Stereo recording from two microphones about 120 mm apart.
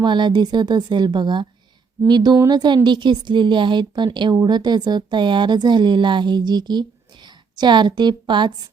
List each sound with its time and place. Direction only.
0.0 s speech: 40° right (ahead or behind)